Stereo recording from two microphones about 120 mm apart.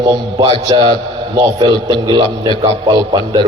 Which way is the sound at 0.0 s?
35° right (ahead or behind).